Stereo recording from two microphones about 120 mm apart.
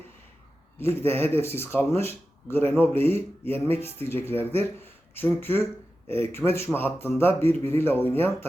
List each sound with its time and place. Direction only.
0.8 s speech: 20° left (ahead or behind)